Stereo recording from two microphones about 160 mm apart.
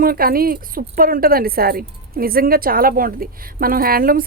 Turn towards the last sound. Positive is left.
turn(degrees=-65)  # may be behind; listen again after turning